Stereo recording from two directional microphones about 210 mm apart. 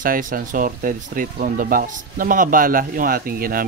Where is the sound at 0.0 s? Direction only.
40° right (ahead or behind).